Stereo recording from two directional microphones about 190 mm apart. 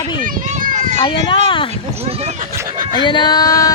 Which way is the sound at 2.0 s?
30° right (ahead or behind).